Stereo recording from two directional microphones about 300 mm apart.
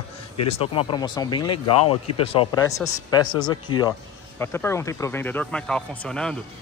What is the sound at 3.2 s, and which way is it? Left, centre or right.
Speech, left.